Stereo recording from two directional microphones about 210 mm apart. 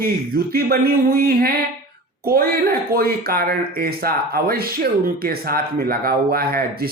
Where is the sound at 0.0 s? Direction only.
45° right (ahead or behind).